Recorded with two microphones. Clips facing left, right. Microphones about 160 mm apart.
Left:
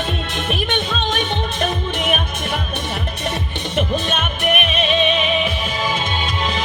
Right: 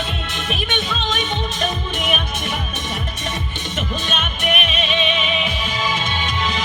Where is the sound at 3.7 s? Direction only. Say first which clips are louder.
Left 5 dB; 50° left (ahead or behind).